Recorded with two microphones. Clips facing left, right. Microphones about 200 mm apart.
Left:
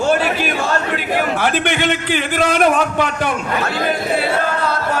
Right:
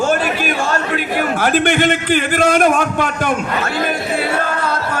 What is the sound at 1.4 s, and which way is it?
A man's voice, 45° right (ahead or behind).